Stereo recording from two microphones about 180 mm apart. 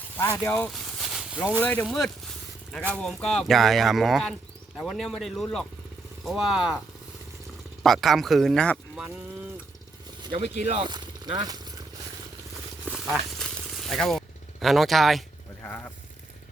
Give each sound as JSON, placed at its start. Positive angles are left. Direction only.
{"t": 0.3, "sound": "a sound", "side_deg": 10}
{"t": 1.6, "sound": "speech", "side_deg": 5}
{"t": 7.9, "sound": "speech", "side_deg": 0}
{"t": 10.5, "sound": "speech", "side_deg": -30}
{"t": 12.8, "sound": "a sound", "side_deg": -5}
{"t": 15.6, "sound": "speech", "side_deg": 10}